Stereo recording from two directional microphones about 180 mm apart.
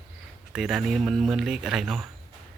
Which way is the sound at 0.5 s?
5° right (ahead or behind).